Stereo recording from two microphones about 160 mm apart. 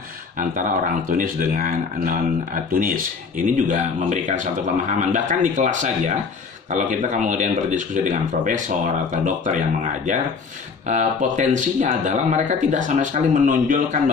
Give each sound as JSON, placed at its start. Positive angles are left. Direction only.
{"t": 0.4, "sound": "speech", "side_deg": -55}
{"t": 10.9, "sound": "speech", "side_deg": -50}